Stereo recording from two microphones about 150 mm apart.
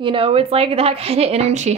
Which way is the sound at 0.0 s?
35° right (ahead or behind).